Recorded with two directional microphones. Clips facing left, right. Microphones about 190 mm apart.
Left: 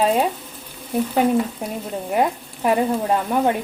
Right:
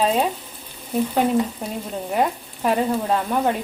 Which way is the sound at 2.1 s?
10° left (ahead or behind).